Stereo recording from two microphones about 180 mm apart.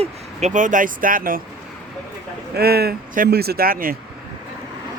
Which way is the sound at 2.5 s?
60° right (ahead or behind).